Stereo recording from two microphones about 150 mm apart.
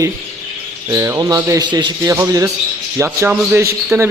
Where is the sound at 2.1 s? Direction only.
20° right (ahead or behind).